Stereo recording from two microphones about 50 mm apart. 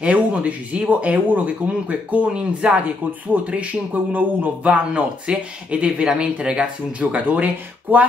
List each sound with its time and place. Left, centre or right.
0.0 s speech: right
3.5 s speech: right